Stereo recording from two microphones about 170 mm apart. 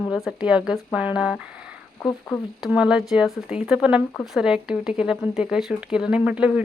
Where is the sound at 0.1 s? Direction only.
5° right (ahead or behind).